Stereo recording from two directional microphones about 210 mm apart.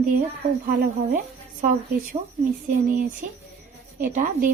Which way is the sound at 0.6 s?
40° right (ahead or behind).